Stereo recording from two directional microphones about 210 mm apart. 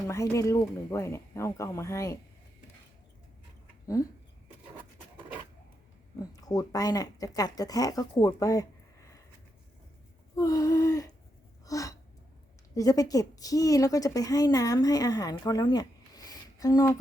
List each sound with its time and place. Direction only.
0.0 s a woman's voice: 15° left (ahead or behind)
6.3 s a woman's voice: 15° left (ahead or behind)
10.3 s a sound: 15° left (ahead or behind)
11.6 s gasp: 15° left (ahead or behind)
12.7 s a woman's voice: 15° left (ahead or behind)